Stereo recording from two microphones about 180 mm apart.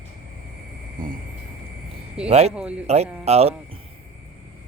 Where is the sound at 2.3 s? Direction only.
35° right (ahead or behind).